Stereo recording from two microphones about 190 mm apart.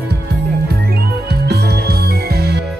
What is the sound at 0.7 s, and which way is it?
Music, 55° right (ahead or behind).